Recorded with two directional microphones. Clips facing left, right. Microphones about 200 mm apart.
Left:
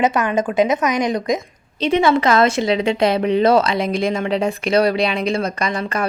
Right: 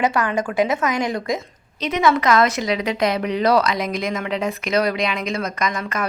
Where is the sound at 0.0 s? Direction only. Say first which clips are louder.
Left 3 dB; 20° left (ahead or behind).